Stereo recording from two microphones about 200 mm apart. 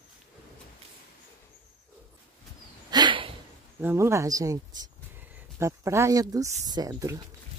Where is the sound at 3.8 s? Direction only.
10° right (ahead or behind).